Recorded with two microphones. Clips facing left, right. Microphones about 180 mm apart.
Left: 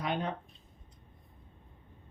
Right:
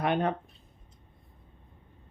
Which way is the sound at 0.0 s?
60° right (ahead or behind).